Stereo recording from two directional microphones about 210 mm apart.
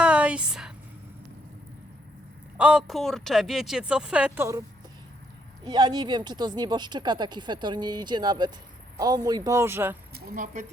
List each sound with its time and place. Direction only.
0.0 s a sound: 5° right (ahead or behind)
2.6 s speech: 5° right (ahead or behind)
5.6 s speech: 20° right (ahead or behind)
10.2 s speech: 40° right (ahead or behind)